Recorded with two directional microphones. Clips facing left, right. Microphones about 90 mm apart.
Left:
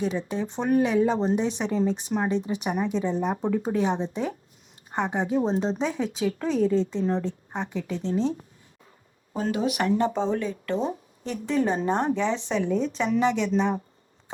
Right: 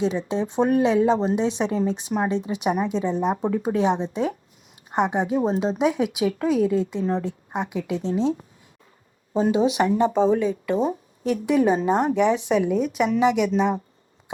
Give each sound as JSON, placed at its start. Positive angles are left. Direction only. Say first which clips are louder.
{"t": 0.0, "sound": "a woman's voice", "louder": "right 4 dB", "side_deg": -20}
{"t": 5.3, "sound": "speech", "louder": "right 2 dB", "side_deg": -35}
{"t": 5.7, "sound": "a woman's voice", "louder": "right 6 dB", "side_deg": -15}
{"t": 9.3, "sound": "speech", "louder": "right 6 dB", "side_deg": -20}
{"t": 14.3, "sound": "insect", "louder": "right 6 dB", "side_deg": -15}